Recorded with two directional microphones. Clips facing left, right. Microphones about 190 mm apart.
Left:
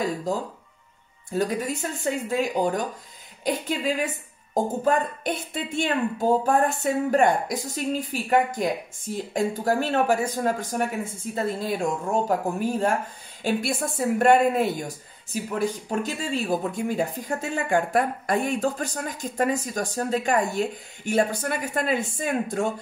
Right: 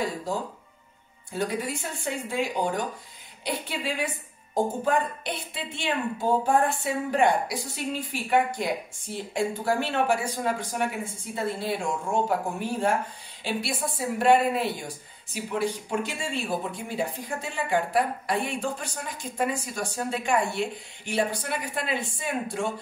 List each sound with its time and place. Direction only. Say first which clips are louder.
1.3 s speech: left 4 dB; 40° left (ahead or behind)